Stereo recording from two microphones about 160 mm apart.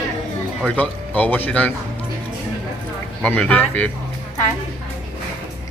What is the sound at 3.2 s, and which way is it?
Speech, 10° left (ahead or behind).